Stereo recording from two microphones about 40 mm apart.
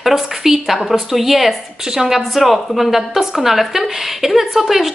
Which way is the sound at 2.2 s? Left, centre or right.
Centre.